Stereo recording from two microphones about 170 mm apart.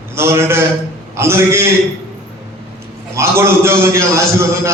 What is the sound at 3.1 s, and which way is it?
A man's voice, 15° right (ahead or behind).